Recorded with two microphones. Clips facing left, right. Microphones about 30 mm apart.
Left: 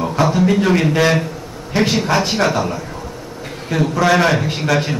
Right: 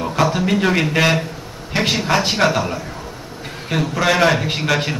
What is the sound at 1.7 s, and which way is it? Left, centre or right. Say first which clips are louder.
Speech: left 2 dB; right.